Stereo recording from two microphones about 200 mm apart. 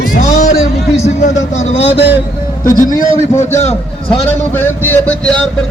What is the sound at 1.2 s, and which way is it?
A man's voice, 35° left (ahead or behind).